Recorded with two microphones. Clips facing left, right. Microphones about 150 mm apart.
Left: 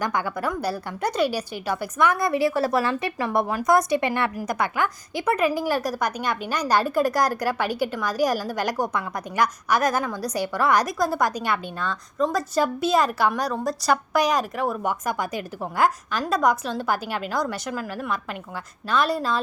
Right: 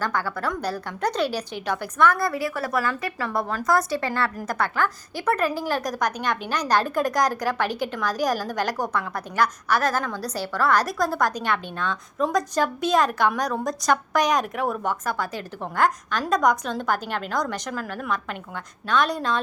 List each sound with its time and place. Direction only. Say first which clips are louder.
0.0 s a woman's voice: left 1 dB; 15° left (ahead or behind); by 14.8 s centre (ahead or behind)
14.8 s a woman's voice: left 1 dB; 15° left (ahead or behind)